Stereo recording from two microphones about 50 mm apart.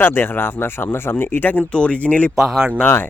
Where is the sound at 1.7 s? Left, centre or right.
Left.